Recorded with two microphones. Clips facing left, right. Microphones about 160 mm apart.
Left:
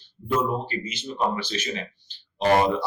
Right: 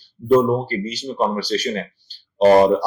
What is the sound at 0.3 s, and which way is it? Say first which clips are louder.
Speech: right 10 dB; 40° right (ahead or behind).